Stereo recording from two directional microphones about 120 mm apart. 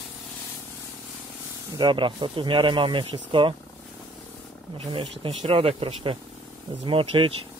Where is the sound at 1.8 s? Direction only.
45° right (ahead or behind).